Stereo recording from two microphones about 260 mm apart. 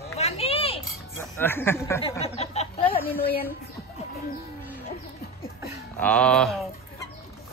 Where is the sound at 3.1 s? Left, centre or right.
Left.